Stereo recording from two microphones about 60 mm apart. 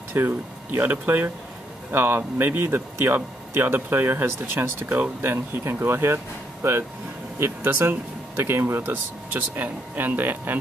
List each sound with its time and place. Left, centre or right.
0.2 s speech: right
8.8 s speech: right